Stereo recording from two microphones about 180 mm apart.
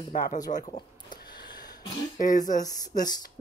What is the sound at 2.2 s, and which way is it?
Speech, 45° left (ahead or behind).